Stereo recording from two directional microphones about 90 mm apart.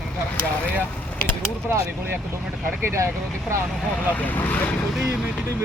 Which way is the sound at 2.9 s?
30° right (ahead or behind).